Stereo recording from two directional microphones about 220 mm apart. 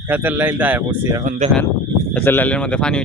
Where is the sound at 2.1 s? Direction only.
10° left (ahead or behind).